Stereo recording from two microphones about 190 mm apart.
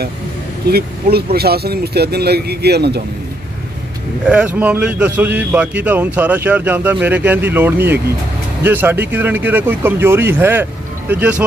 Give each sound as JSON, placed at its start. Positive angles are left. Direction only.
{"t": 0.7, "sound": "speech", "side_deg": -55}
{"t": 4.3, "sound": "a man's voice", "side_deg": -5}